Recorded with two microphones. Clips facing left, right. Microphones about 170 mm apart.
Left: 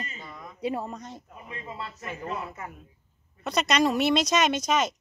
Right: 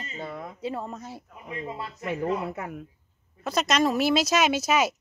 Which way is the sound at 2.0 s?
65° right (ahead or behind).